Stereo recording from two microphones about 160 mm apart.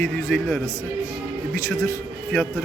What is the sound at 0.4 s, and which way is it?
Speech, 5° right (ahead or behind).